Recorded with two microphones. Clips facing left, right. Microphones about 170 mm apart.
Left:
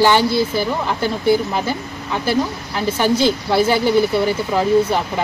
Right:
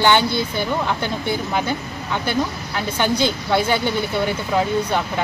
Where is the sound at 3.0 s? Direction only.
5° left (ahead or behind).